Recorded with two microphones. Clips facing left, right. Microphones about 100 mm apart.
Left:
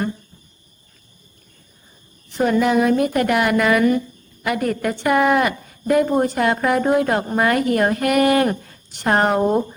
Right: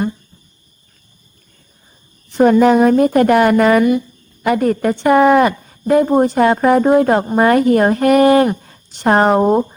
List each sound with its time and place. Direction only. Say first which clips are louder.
2.4 s a woman's voice: right 7 dB; 40° right (ahead or behind)